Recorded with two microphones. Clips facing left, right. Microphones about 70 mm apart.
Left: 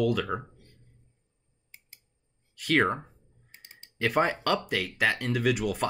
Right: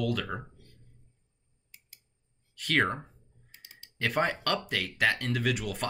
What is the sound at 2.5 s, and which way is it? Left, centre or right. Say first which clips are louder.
Speech: left 3 dB; centre.